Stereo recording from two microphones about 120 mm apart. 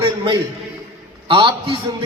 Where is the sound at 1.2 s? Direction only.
45° right (ahead or behind).